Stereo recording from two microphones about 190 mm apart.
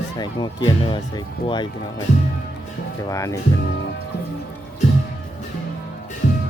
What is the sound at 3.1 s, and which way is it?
Speech, 15° left (ahead or behind).